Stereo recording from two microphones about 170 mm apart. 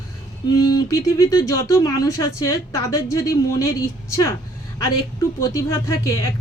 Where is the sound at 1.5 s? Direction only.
20° left (ahead or behind).